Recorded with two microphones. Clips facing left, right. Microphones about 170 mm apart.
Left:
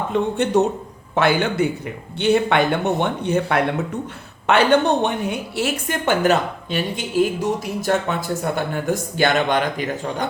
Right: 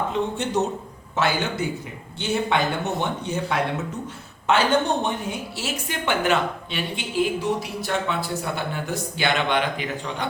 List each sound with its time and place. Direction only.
0.1 s a woman's voice: 60° left (ahead or behind); by 10.2 s 45° left (ahead or behind)